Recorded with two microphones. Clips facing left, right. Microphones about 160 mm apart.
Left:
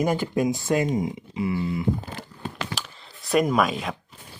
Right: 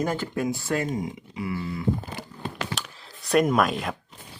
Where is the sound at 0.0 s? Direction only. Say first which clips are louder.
Left 4 dB; 15° left (ahead or behind).